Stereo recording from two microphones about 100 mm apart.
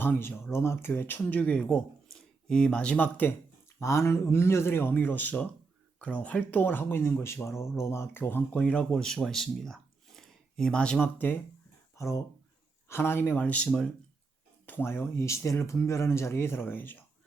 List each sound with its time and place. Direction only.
0.0 s speech: 20° left (ahead or behind)
3.8 s speech: 30° left (ahead or behind)
11.9 s speech: 30° left (ahead or behind); by 13.9 s 10° left (ahead or behind)
14.7 s speech: 20° left (ahead or behind)